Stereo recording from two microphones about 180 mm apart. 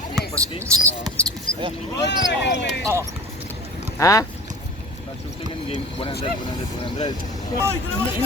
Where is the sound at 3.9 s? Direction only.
20° left (ahead or behind).